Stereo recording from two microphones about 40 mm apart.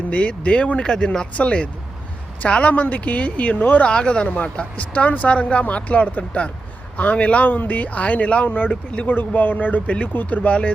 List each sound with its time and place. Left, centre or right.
0.1 s speech: left
0.9 s speech: centre
1.4 s speech: left
3.8 s speech: left
5.3 s speech: left
7.4 s speech: left
8.4 s speech: left
8.7 s speech: left
9.0 s speech: left